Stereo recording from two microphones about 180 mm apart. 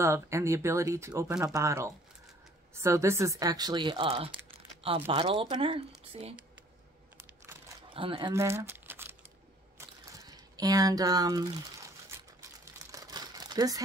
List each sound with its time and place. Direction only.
0.0 s speech: 15° right (ahead or behind); by 6.3 s 35° right (ahead or behind)
7.9 s speech: 30° right (ahead or behind)
8.3 s speech: 15° right (ahead or behind)
9.8 s a sound: 20° right (ahead or behind)
12.9 s crumpling: 20° right (ahead or behind)